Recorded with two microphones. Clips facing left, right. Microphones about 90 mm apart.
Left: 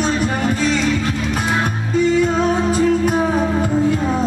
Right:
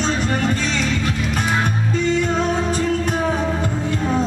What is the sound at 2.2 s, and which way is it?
Music, 5° left (ahead or behind).